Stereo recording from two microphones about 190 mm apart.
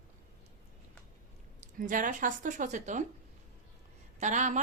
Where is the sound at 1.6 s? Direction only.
45° right (ahead or behind).